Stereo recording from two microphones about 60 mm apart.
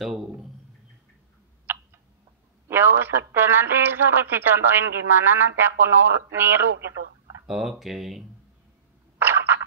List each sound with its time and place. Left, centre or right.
0.0 s a man's voice: centre
1.7 s tick-tock: right
2.7 s speech: right
7.4 s speech: centre
9.2 s a sound: right